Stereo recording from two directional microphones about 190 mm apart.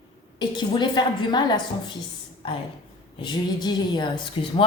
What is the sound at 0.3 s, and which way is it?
Speech, 25° left (ahead or behind).